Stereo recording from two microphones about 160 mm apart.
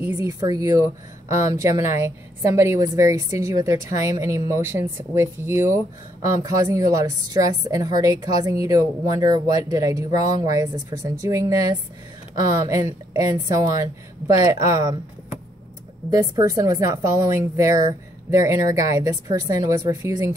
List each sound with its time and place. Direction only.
0.0 s speech: 20° right (ahead or behind)
16.1 s speech: 20° right (ahead or behind)